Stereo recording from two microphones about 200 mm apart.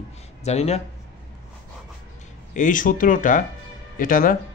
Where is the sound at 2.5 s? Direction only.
40° left (ahead or behind).